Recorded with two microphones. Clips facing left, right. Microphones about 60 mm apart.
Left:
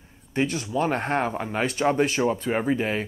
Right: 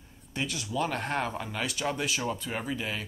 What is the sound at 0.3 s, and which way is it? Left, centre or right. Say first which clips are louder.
Speech: left 8 dB; left.